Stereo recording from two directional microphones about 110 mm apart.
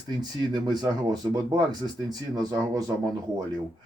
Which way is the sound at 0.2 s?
40° right (ahead or behind).